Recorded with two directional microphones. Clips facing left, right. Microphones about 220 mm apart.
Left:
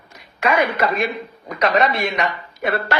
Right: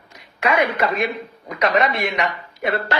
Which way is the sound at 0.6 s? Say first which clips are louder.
Even; 20° right (ahead or behind).